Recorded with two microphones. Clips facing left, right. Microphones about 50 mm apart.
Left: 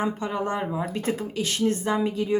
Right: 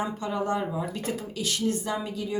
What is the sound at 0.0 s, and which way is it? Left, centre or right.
Speech, left.